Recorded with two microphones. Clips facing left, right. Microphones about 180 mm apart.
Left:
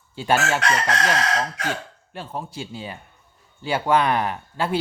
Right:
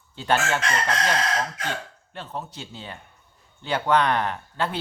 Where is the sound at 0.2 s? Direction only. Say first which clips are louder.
Left 2 dB; 10° left (ahead or behind).